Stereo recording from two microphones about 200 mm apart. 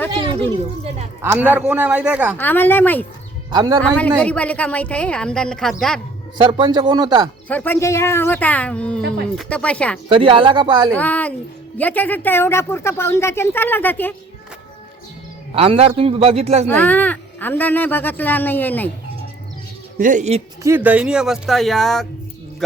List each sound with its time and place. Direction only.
1.2 s a man's voice: 10° right (ahead or behind)
2.4 s a woman's voice: 10° left (ahead or behind)
3.5 s speech: 20° right (ahead or behind)
3.8 s a woman's voice: 5° left (ahead or behind)
6.3 s speech: 20° right (ahead or behind)
7.4 s a woman's voice: 10° left (ahead or behind)
10.1 s speech: 25° right (ahead or behind)
10.9 s a woman's voice: 10° left (ahead or behind)
15.5 s speech: 30° right (ahead or behind)
16.6 s a woman's voice: 10° left (ahead or behind)
20.0 s speech: 40° right (ahead or behind)
20.7 s a woman's voice: 10° right (ahead or behind)